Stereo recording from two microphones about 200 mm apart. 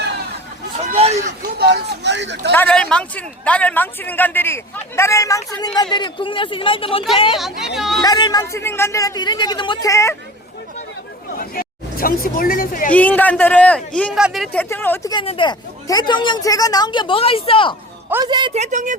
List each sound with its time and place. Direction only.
0.9 s a sound: 30° right (ahead or behind)
1.4 s speech: 55° right (ahead or behind)
2.5 s a man's voice: 5° left (ahead or behind); by 7.0 s 25° left (ahead or behind)
7.3 s speech: centre (ahead or behind)
8.0 s a man's voice: 20° left (ahead or behind)
11.3 s speech: 45° left (ahead or behind)
12.9 s a man's voice: 10° left (ahead or behind)
15.2 s speech: 25° left (ahead or behind)
18.1 s speech: 20° right (ahead or behind); by 18.9 s 40° right (ahead or behind)